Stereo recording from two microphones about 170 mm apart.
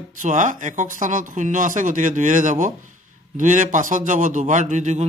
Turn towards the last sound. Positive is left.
turn(degrees=-45)  # may be behind; listen again after turning